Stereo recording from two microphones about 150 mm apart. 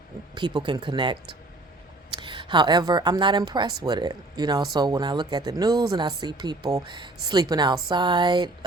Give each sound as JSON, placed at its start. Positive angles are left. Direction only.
{"t": 0.3, "sound": "speech", "side_deg": -30}